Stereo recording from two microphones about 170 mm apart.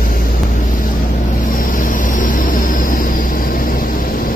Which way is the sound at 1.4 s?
55° left (ahead or behind).